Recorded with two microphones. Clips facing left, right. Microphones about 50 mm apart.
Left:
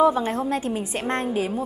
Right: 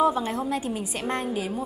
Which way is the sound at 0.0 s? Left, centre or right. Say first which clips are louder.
Left 3 dB; left.